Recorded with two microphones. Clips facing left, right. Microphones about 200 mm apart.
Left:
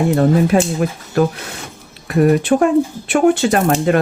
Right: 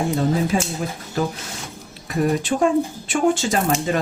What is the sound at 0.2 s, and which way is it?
Speech, 65° left (ahead or behind).